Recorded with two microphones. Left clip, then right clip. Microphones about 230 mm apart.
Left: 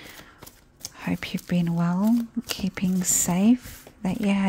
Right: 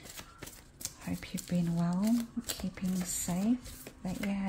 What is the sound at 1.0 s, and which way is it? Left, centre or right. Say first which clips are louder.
Speech: left 13 dB; left.